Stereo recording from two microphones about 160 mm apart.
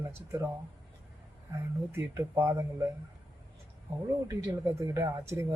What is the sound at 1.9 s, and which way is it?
Speech, 20° right (ahead or behind).